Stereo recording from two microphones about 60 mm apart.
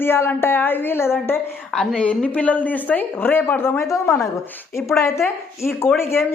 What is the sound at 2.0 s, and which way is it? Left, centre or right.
Speech, left.